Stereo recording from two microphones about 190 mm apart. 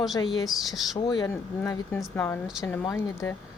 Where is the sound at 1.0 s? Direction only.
20° left (ahead or behind).